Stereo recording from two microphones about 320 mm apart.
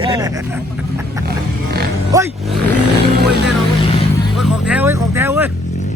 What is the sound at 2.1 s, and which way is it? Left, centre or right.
Vehicle, centre.